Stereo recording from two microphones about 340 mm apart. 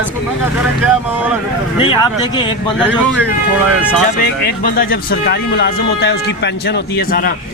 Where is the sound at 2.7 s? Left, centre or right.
Centre.